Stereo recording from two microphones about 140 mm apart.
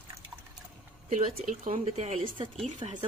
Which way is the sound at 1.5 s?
55° right (ahead or behind).